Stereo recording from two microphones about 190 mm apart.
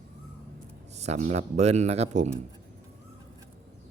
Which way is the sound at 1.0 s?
35° right (ahead or behind).